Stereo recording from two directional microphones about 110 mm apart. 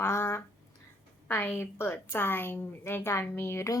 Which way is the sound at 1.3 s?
20° left (ahead or behind).